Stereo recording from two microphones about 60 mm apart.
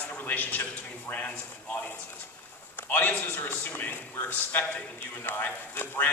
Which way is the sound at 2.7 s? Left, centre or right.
Left.